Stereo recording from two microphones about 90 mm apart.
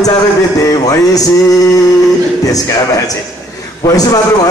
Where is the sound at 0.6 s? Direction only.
45° left (ahead or behind).